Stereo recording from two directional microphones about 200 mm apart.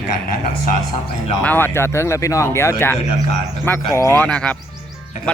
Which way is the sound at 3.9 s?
10° left (ahead or behind).